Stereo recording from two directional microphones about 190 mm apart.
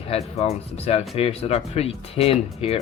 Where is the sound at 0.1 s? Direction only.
35° left (ahead or behind).